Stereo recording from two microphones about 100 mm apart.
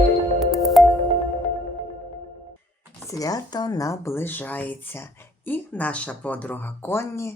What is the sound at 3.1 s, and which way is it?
Speech, 40° left (ahead or behind).